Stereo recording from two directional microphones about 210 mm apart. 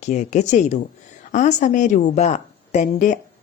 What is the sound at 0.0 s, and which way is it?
A woman's voice, 35° left (ahead or behind).